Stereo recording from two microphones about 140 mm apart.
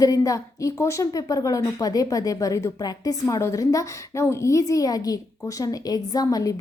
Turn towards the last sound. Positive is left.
turn(degrees=25)  # may be behind; listen again after turning